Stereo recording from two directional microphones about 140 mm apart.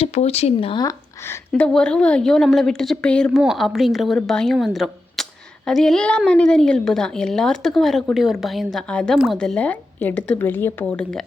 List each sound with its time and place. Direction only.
0.0 s speech: 50° left (ahead or behind)
0.8 s a woman's voice: 20° left (ahead or behind)
9.1 s a woman's voice: 5° right (ahead or behind)
9.4 s speech: 5° left (ahead or behind)